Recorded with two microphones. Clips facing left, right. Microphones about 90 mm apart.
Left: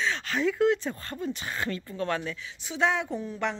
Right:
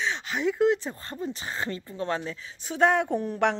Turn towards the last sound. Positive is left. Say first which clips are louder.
# right 6 dB
turn(degrees=-65)  # may be behind; listen again after turning